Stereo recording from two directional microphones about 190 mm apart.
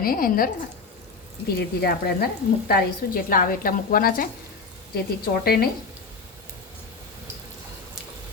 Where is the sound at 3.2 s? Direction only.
50° left (ahead or behind).